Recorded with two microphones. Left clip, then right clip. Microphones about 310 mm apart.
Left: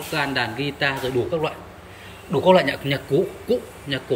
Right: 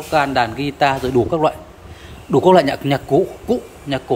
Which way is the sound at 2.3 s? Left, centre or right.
Right.